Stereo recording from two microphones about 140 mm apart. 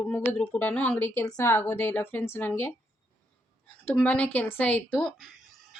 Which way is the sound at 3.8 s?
10° left (ahead or behind).